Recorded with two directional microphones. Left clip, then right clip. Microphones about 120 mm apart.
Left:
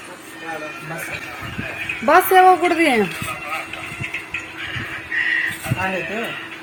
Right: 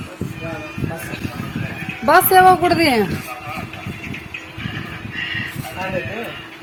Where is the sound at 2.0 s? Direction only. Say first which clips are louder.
Right 1 dB; 5° right (ahead or behind).